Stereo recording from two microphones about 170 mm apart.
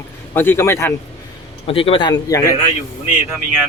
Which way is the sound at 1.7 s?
35° left (ahead or behind).